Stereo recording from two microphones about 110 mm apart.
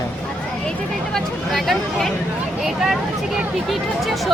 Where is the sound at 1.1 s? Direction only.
5° left (ahead or behind).